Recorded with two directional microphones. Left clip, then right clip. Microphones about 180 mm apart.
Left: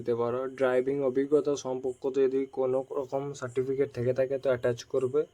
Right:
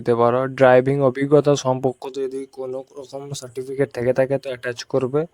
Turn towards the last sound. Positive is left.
turn(degrees=-50)  # may be behind; listen again after turning